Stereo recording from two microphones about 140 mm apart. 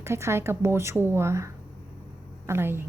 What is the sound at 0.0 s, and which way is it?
A woman's voice, 20° right (ahead or behind).